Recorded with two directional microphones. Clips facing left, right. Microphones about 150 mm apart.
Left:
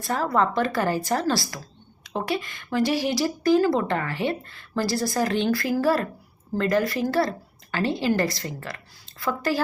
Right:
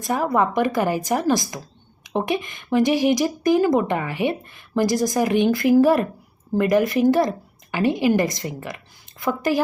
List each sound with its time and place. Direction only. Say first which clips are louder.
0.0 s a woman's voice: right 3 dB; 15° right (ahead or behind)